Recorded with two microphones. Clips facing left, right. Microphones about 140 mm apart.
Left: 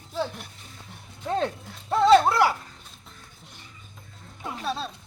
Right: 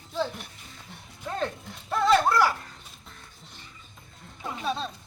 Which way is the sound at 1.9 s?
25° left (ahead or behind).